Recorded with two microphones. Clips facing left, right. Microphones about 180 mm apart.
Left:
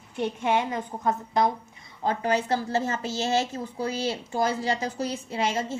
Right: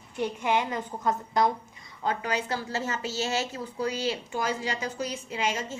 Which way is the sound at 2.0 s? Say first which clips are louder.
Left 2 dB; 35° left (ahead or behind).